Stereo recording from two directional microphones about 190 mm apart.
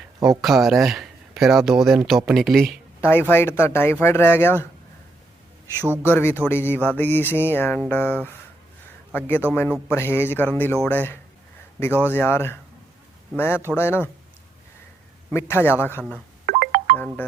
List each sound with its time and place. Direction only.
0.4 s speech: centre (ahead or behind)
3.0 s music: 10° left (ahead or behind)
5.8 s a man's voice: 10° right (ahead or behind)
6.1 s music: 10° left (ahead or behind)
15.3 s music: 10° left (ahead or behind)
16.5 s music: 55° right (ahead or behind)